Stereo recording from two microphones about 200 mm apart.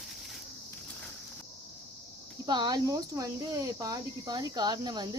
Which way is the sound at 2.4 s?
20° right (ahead or behind).